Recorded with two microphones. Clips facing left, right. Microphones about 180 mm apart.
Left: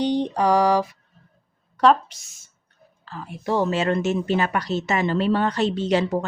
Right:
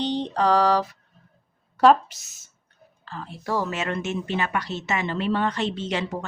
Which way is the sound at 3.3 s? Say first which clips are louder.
Left 5 dB; 25° left (ahead or behind).